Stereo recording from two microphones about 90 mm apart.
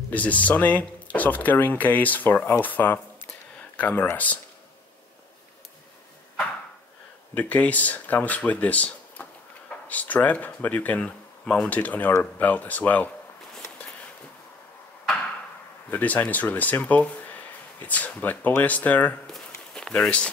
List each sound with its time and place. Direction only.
0.1 s speech: 15° left (ahead or behind)
3.3 s a sound: 15° left (ahead or behind)
7.3 s speech: 15° left (ahead or behind)
15.9 s speech: 15° left (ahead or behind)
19.3 s walk: 10° left (ahead or behind)